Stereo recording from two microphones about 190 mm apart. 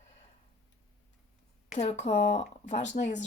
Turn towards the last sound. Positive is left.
turn(degrees=35)  # may be behind; listen again after turning